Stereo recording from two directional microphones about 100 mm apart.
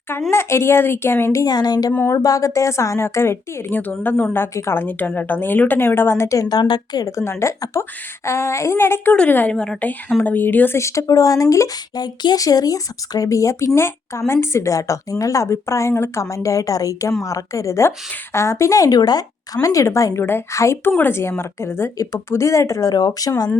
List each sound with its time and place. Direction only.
0.3 s a woman's voice: 25° left (ahead or behind); by 7.1 s 45° left (ahead or behind)
7.2 s a woman's voice: 30° left (ahead or behind); by 10.2 s 10° left (ahead or behind)
10.2 s a woman's voice: 20° left (ahead or behind)
10.8 s a woman's voice: 30° left (ahead or behind)